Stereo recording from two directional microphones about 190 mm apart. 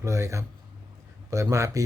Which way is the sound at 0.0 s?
15° right (ahead or behind).